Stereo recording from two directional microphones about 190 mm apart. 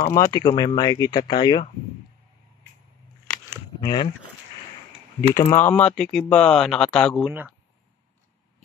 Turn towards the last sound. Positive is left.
turn(degrees=5)  # may be behind; listen again after turning